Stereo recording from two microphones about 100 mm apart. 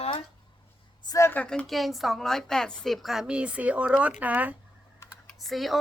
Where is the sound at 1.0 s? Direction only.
35° left (ahead or behind).